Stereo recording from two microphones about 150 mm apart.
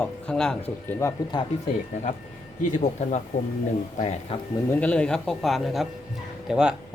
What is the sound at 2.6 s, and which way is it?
Speech, 50° left (ahead or behind).